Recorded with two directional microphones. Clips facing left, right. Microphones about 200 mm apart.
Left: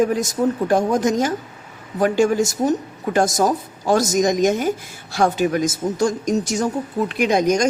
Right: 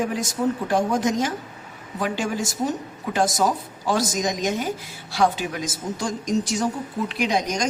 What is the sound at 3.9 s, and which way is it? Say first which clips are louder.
A woman's voice: left 6 dB; 50° left (ahead or behind).